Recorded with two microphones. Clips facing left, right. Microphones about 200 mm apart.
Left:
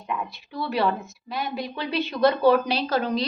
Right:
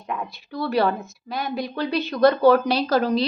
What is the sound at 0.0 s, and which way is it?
A woman's voice, 40° right (ahead or behind).